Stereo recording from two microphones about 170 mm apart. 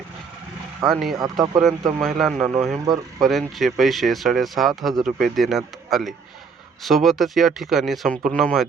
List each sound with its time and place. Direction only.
0.9 s speech: centre (ahead or behind)
2.7 s speech: 20° right (ahead or behind)
3.2 s speech: centre (ahead or behind)